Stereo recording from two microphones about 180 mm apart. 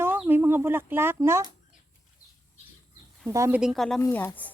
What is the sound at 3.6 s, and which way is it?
Speech, centre (ahead or behind).